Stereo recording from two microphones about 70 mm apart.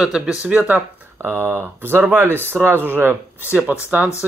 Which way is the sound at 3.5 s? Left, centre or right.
Right.